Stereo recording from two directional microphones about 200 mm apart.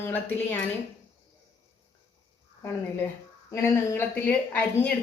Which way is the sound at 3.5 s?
15° left (ahead or behind).